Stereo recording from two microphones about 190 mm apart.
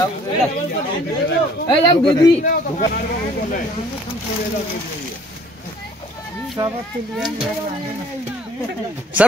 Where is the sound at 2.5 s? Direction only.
45° left (ahead or behind).